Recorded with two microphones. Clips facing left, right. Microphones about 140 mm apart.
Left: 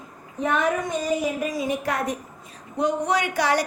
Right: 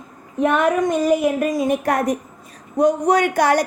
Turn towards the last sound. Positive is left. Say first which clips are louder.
# right 6 dB
turn(degrees=-50)  # may be behind; listen again after turning